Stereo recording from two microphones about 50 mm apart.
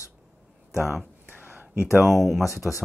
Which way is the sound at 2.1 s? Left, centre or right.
Centre.